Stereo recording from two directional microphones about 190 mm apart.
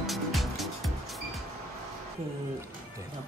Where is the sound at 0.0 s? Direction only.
Centre (ahead or behind).